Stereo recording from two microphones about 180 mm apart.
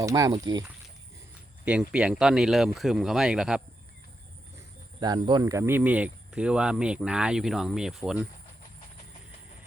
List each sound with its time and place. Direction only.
0.0 s speech: 20° right (ahead or behind)
1.6 s speech: 5° right (ahead or behind)
4.9 s speech: 25° right (ahead or behind); by 8.3 s 5° right (ahead or behind)